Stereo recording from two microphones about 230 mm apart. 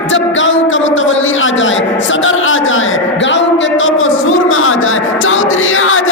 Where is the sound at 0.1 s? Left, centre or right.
Left.